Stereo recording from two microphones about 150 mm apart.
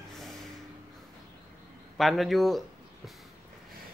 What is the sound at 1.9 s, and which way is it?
Speech, centre (ahead or behind).